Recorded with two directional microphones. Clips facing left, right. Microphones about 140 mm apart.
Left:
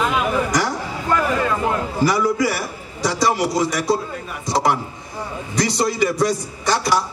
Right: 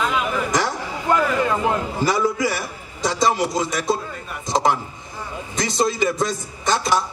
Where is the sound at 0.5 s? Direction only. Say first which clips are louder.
Left 1 dB; 20° right (ahead or behind).